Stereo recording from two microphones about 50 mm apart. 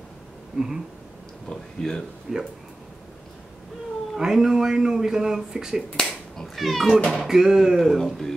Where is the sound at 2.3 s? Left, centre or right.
Centre.